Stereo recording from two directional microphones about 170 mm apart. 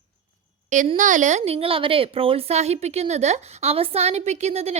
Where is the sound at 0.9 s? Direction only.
45° right (ahead or behind).